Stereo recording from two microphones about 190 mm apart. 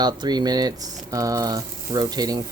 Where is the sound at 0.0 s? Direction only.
20° right (ahead or behind).